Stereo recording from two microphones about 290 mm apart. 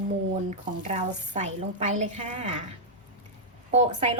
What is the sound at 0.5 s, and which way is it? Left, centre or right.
Speech, right.